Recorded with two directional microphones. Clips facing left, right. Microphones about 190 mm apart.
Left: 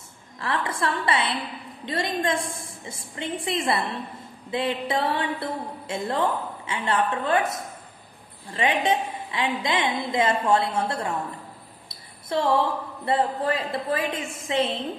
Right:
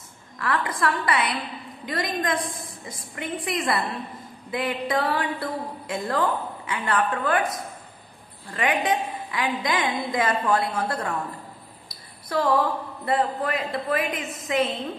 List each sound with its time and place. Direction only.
0.4 s a woman's voice: 25° left (ahead or behind)